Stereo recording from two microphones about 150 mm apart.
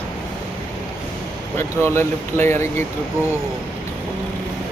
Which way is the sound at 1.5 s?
15° left (ahead or behind).